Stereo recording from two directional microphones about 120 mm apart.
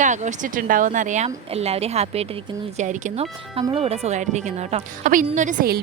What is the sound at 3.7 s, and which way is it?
A woman's voice, 55° right (ahead or behind).